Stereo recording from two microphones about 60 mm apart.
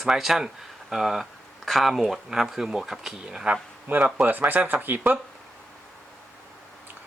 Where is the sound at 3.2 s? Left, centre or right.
Centre.